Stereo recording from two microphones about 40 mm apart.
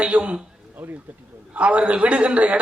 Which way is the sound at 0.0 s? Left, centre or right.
Right.